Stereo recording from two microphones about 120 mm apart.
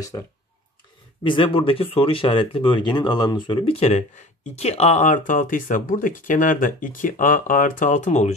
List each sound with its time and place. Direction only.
1.2 s speech: 45° left (ahead or behind); by 8.4 s 75° left (ahead or behind)